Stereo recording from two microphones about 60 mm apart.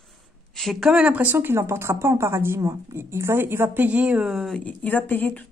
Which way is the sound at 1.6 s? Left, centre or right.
Right.